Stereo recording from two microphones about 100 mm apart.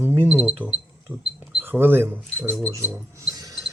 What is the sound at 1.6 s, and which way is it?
Speech, 20° right (ahead or behind).